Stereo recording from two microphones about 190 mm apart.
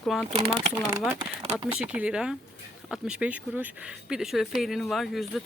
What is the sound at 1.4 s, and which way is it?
Speech, 25° right (ahead or behind).